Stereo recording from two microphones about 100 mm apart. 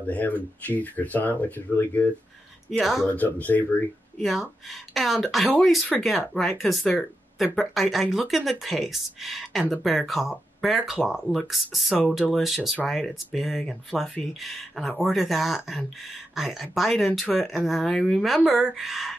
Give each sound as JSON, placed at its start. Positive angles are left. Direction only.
{"t": 0.0, "sound": "speech", "side_deg": 15}
{"t": 2.8, "sound": "speech", "side_deg": 0}
{"t": 3.1, "sound": "speech", "side_deg": 15}
{"t": 4.2, "sound": "speech", "side_deg": 0}